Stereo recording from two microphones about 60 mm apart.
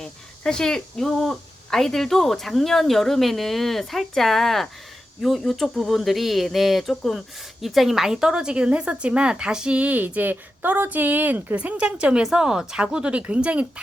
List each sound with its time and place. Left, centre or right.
0.0 s speech: centre
9.7 s speech: right
11.5 s speech: centre